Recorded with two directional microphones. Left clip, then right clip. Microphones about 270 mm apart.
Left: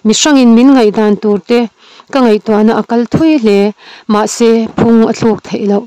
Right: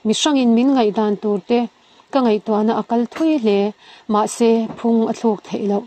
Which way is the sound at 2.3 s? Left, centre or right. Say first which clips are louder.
Left 8 dB; left.